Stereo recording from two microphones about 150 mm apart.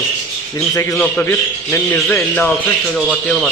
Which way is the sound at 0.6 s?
20° left (ahead or behind).